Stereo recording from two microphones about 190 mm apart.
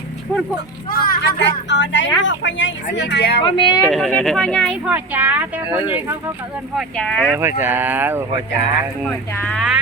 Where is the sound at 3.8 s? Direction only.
Centre (ahead or behind).